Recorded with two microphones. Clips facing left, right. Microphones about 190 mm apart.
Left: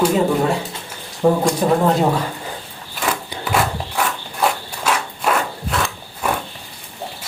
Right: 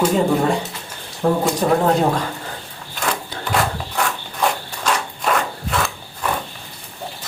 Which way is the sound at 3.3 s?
5° left (ahead or behind).